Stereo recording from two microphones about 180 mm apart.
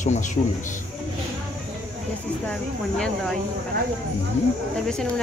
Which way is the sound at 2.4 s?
5° left (ahead or behind).